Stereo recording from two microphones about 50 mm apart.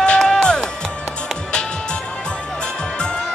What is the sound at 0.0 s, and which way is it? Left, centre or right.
Music, centre.